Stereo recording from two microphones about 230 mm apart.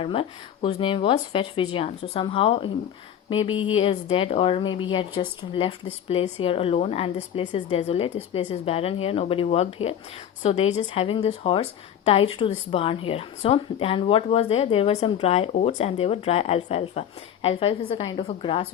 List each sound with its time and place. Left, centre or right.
0.0 s a woman's voice: left
3.8 s a woman's voice: left